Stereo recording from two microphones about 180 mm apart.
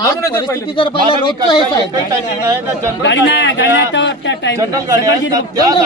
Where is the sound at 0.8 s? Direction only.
30° left (ahead or behind).